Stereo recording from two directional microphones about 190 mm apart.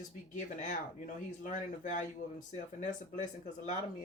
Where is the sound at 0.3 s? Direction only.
40° left (ahead or behind).